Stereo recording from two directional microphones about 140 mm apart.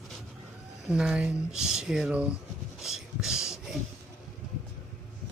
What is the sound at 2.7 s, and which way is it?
Filing, centre (ahead or behind).